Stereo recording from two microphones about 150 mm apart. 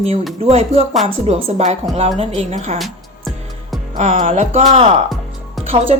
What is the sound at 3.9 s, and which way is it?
Speech, 55° right (ahead or behind).